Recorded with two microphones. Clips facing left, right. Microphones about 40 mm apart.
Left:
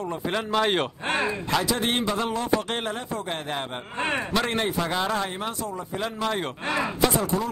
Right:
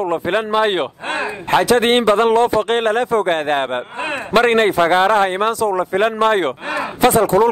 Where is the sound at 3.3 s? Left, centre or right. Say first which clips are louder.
Right 13 dB; right.